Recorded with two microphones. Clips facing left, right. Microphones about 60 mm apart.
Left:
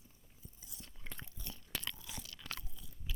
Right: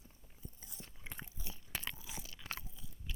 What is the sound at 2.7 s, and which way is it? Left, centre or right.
Crunch, centre.